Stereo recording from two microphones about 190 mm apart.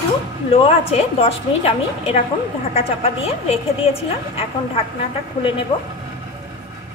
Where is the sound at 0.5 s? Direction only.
30° left (ahead or behind).